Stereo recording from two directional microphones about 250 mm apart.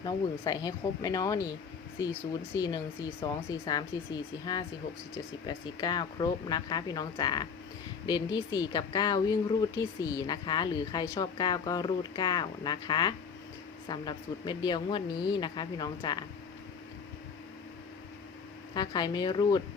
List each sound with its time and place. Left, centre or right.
0.0 s speech: centre
2.6 s speech: centre
18.7 s speech: centre